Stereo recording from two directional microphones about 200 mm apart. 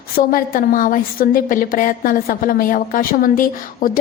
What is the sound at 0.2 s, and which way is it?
A woman's voice, 45° left (ahead or behind).